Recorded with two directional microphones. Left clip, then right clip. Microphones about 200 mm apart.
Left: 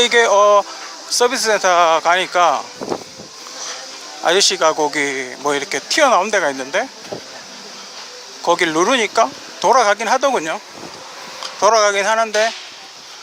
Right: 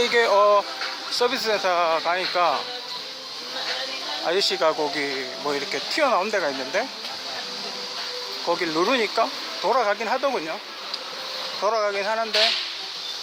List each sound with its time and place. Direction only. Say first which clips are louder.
0.0 s speech: left 6 dB; 20° left (ahead or behind)
4.3 s speech: left 8 dB; 25° left (ahead or behind)
8.4 s speech: left 8 dB; 30° left (ahead or behind)
11.6 s speech: left 10 dB; 30° left (ahead or behind)